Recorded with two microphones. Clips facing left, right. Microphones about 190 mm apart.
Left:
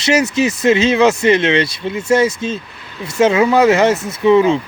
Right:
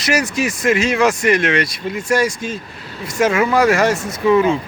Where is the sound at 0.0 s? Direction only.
25° left (ahead or behind).